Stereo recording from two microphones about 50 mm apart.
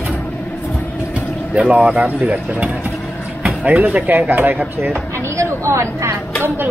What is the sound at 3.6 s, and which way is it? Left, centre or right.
Speech, right.